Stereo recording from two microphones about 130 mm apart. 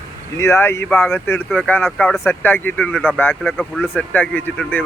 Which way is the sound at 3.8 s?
15° left (ahead or behind).